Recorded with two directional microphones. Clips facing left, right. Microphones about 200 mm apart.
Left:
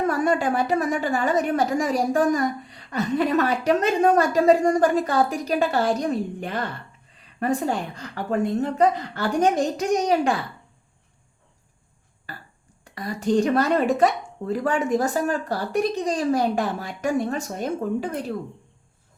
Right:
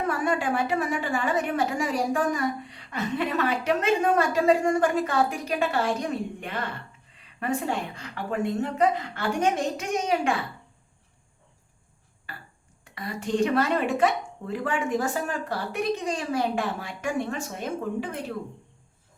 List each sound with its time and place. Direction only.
0.1 s a woman's voice: 40° left (ahead or behind)
12.3 s burping: 40° left (ahead or behind)
12.8 s a woman's voice: 40° left (ahead or behind)